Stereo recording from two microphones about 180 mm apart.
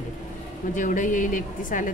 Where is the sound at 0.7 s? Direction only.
45° left (ahead or behind).